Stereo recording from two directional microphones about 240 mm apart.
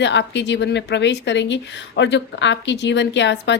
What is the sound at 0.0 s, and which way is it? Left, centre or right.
A woman's voice, left.